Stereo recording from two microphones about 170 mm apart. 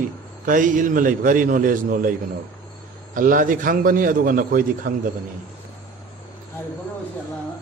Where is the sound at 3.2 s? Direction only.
50° right (ahead or behind).